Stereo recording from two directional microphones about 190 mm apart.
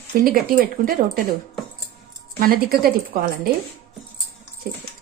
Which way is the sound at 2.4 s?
50° right (ahead or behind).